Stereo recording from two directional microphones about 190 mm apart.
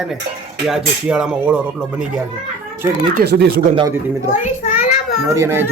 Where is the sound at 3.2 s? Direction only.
55° right (ahead or behind).